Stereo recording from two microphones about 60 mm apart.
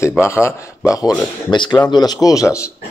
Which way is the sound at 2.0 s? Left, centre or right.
Left.